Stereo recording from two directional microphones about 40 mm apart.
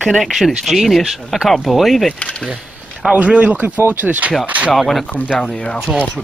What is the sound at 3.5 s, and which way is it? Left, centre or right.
Speech, right.